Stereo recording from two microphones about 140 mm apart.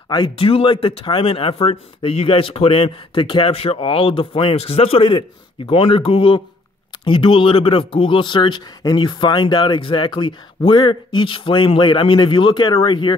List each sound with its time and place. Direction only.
0.1 s speech: 35° left (ahead or behind)